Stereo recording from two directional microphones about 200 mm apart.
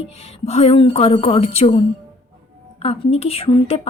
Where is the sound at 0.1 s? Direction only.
30° left (ahead or behind).